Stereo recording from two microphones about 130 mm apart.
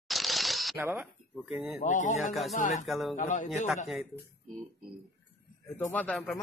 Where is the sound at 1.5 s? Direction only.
10° right (ahead or behind).